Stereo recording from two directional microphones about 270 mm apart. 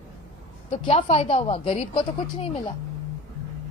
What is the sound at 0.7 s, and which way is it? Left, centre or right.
A woman's voice, left.